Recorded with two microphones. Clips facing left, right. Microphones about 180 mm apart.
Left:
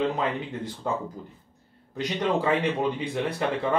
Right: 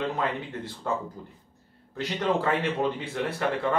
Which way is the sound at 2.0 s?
20° left (ahead or behind).